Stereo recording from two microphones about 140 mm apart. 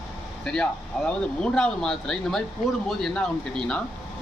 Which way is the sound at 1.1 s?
5° left (ahead or behind).